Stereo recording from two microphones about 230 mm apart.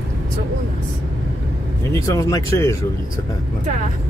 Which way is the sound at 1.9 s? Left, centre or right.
Centre.